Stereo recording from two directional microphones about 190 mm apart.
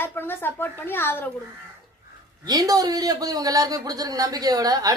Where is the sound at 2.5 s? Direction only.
20° right (ahead or behind).